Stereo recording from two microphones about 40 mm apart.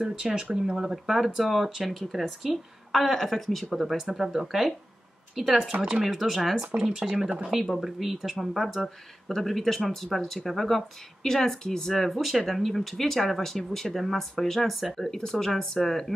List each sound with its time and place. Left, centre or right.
0.0 s speech: centre
1.0 s speech: centre
15.0 s speech: centre